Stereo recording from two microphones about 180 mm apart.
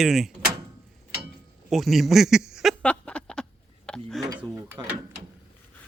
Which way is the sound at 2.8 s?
5° left (ahead or behind).